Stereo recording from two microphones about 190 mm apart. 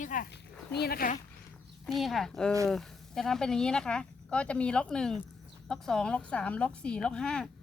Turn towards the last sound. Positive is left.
turn(degrees=5)  # may be behind; listen again after turning